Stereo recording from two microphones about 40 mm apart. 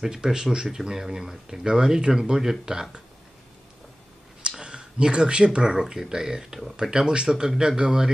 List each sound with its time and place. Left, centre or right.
0.0 s speech: centre
4.4 s speech: right